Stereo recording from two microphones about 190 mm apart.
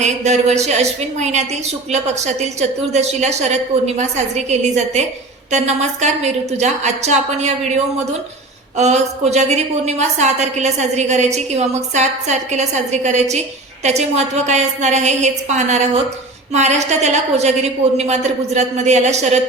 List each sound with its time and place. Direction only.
0.0 s a woman's voice: 35° right (ahead or behind)
8.8 s a woman's voice: 35° right (ahead or behind)